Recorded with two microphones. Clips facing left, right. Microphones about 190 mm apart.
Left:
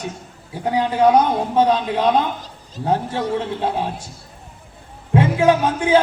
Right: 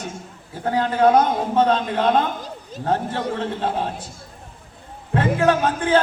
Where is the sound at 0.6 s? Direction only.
15° left (ahead or behind).